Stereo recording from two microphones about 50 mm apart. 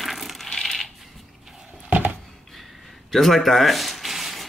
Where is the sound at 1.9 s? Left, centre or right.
Right.